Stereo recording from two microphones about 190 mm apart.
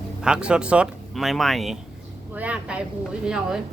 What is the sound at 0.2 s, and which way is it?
Speech, 5° right (ahead or behind).